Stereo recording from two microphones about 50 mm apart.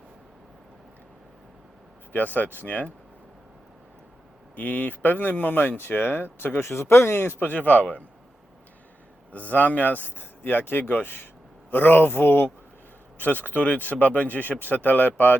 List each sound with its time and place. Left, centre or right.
2.1 s speech: left
4.5 s speech: left
6.6 s speech: left
7.4 s speech: left
9.3 s speech: left